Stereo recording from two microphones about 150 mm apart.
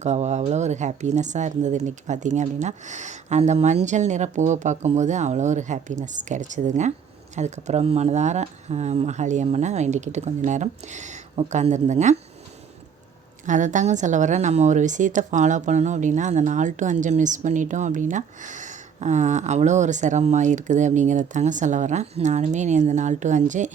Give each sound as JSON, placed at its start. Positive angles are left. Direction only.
{"t": 0.0, "sound": "speech", "side_deg": -50}
{"t": 13.4, "sound": "speech", "side_deg": -55}